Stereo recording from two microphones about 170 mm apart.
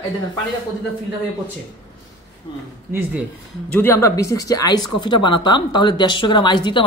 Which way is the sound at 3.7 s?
10° left (ahead or behind).